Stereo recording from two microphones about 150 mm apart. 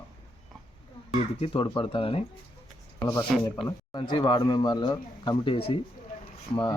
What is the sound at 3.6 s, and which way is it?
Speech, 30° left (ahead or behind).